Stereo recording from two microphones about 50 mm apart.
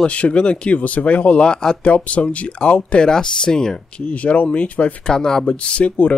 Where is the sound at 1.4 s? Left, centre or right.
Centre.